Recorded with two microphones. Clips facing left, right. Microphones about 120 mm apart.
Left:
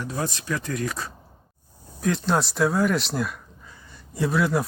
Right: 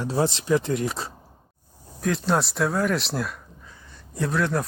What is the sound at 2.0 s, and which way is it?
Speech, centre (ahead or behind).